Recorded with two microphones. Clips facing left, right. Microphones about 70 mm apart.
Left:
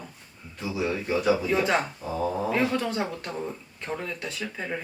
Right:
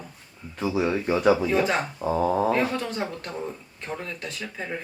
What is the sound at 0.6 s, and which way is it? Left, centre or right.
Speech, right.